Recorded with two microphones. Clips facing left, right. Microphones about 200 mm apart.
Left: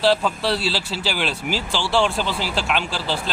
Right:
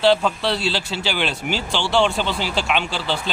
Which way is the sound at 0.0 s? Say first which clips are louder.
Right 2 dB; 5° left (ahead or behind).